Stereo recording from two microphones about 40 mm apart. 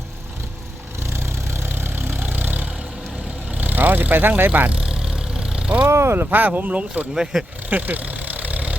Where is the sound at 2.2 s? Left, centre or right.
Right.